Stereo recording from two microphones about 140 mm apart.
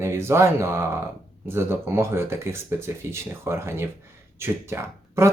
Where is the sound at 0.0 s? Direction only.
20° right (ahead or behind).